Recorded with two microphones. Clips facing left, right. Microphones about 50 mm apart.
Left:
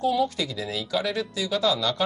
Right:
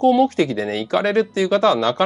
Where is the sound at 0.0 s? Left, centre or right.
Right.